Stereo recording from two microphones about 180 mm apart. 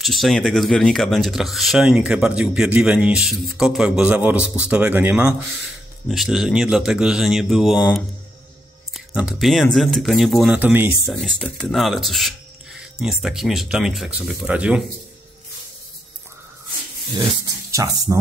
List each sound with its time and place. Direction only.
0.0 s speech: centre (ahead or behind)
11.1 s speech: 5° left (ahead or behind)
17.6 s speech: 20° right (ahead or behind)